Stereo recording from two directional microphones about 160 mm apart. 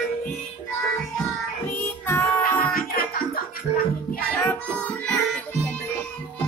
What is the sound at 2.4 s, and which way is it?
Music, 65° left (ahead or behind).